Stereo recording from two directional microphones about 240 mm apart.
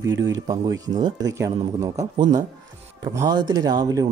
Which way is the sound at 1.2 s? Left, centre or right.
Centre.